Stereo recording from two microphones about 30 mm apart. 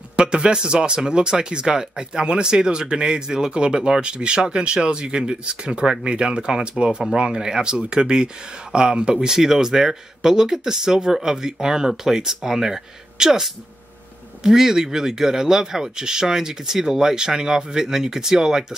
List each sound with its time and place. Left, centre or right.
0.1 s speech: right
7.2 s speech: right